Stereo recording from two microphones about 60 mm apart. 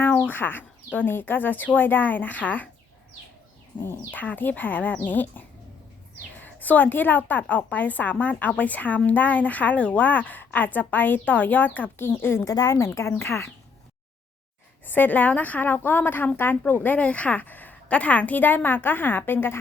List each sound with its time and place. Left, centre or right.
0.3 s a woman's voice: left
3.8 s a woman's voice: left
12.5 s speech: left
14.8 s a woman's voice: left